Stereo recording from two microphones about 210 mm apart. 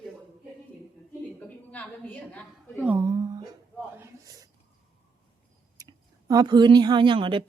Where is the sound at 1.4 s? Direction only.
5° left (ahead or behind).